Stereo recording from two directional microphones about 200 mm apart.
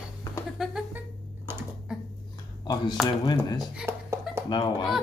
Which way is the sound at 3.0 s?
20° left (ahead or behind).